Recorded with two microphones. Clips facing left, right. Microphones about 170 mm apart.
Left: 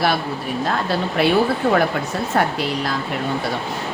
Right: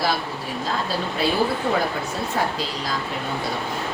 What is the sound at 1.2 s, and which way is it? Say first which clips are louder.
Speech: left 6 dB; 65° left (ahead or behind).